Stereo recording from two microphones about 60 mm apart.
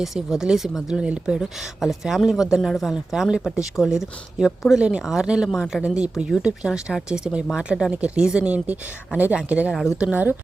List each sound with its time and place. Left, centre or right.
0.0 s speech: centre
1.8 s speech: centre
5.8 s speech: centre